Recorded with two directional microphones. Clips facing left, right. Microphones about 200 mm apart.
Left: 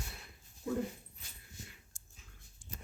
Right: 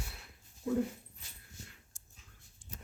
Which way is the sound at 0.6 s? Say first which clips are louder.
Right 3 dB; centre (ahead or behind).